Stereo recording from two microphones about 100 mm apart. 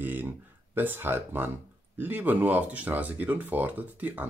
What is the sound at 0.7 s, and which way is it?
Speech, 20° right (ahead or behind).